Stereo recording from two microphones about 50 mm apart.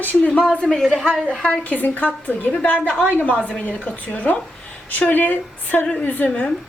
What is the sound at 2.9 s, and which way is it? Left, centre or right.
Speech, centre.